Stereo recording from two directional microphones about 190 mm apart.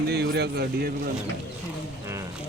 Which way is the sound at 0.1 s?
60° right (ahead or behind).